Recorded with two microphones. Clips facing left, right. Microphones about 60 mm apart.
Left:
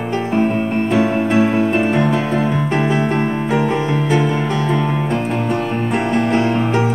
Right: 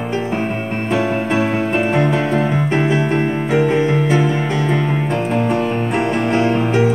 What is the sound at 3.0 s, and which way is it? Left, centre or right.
Music, centre.